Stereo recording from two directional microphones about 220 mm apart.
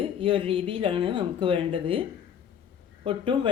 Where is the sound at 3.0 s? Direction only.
25° right (ahead or behind).